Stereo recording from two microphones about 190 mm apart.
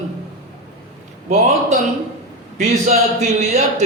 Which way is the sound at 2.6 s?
35° right (ahead or behind).